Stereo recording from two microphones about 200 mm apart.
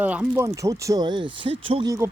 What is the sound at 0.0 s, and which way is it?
Speech, 5° right (ahead or behind).